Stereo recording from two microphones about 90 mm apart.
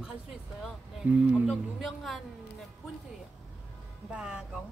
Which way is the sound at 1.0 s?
15° right (ahead or behind).